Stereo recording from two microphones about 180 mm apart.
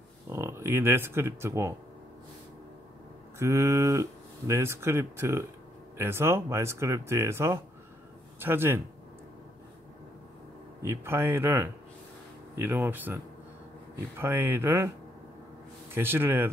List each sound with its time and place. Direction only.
0.3 s speech: 15° right (ahead or behind)
3.3 s speech: 15° right (ahead or behind)
10.8 s speech: 15° right (ahead or behind)
15.9 s speech: 10° right (ahead or behind)